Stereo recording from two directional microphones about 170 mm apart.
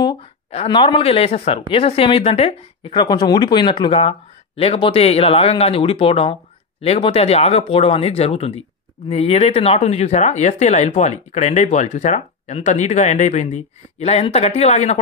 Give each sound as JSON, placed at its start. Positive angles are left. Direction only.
{"t": 0.5, "sound": "speech", "side_deg": 30}